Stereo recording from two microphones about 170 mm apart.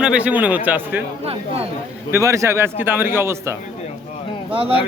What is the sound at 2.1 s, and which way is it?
Speech, 15° right (ahead or behind).